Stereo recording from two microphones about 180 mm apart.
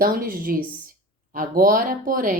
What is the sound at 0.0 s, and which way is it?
Speech, 50° right (ahead or behind).